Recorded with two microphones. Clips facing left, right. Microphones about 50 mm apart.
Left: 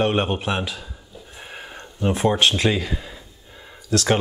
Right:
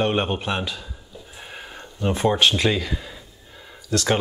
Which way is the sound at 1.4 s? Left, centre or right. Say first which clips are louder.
Left 1 dB; centre.